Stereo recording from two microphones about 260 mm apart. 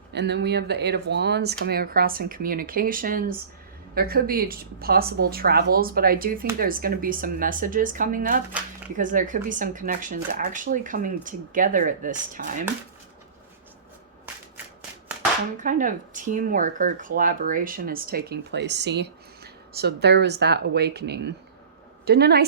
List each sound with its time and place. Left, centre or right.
0.1 s speech: right
15.5 s speech: right